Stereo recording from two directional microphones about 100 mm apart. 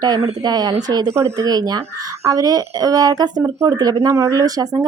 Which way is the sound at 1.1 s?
30° right (ahead or behind).